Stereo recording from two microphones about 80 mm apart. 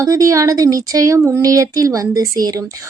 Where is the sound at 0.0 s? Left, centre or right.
Right.